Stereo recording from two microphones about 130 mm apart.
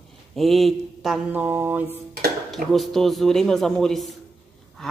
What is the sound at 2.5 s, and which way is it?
A woman's voice, centre (ahead or behind).